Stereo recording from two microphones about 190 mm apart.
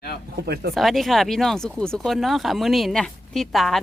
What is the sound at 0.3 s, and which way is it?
Speech, 55° right (ahead or behind).